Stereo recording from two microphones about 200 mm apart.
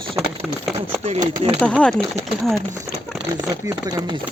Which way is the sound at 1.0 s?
30° right (ahead or behind).